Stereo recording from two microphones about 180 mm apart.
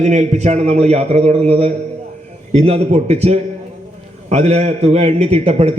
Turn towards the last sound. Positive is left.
turn(degrees=-35)  # may be behind; listen again after turning